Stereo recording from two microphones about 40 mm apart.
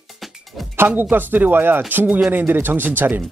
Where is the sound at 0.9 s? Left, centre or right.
Right.